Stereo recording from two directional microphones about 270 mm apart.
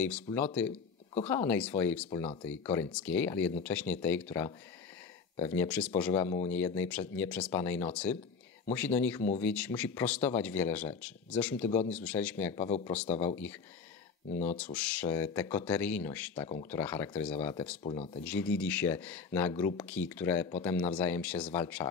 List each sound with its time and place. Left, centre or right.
0.0 s speech: centre
14.6 s speech: centre
17.9 s speech: left
18.2 s speech: centre